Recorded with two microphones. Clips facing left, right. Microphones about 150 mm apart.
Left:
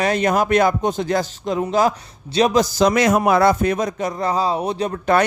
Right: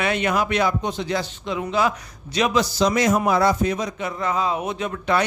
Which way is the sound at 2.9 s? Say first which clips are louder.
Left 1 dB; 70° left (ahead or behind).